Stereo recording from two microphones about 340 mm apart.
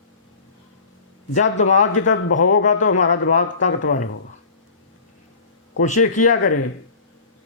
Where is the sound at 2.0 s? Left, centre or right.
Left.